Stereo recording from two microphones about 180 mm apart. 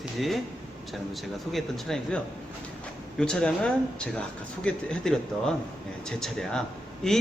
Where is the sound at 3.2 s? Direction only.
5° left (ahead or behind).